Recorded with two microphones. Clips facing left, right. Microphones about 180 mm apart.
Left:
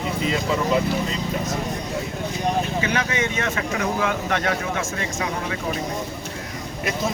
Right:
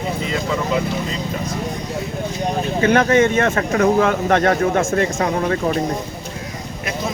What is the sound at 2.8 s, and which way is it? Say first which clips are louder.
Speech: right 10 dB; 50° right (ahead or behind).